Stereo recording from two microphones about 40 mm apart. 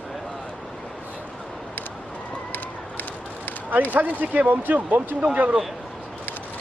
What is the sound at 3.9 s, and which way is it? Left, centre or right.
Speech, right.